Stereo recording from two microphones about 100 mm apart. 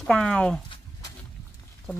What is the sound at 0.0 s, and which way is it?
Speech, 5° left (ahead or behind).